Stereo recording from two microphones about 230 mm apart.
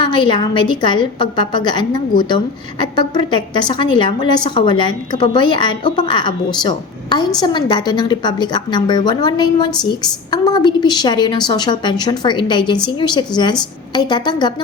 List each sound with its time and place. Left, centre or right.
0.0 s a woman's voice: centre